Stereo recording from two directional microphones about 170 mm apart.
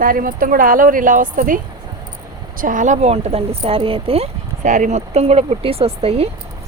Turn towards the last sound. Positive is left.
turn(degrees=-35)  # may be behind; listen again after turning